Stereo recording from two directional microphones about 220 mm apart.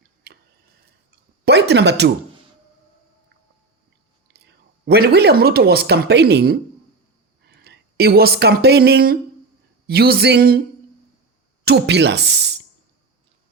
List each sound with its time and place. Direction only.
1.5 s speech: 50° right (ahead or behind)
4.3 s speech: 45° right (ahead or behind)
11.6 s speech: 50° right (ahead or behind)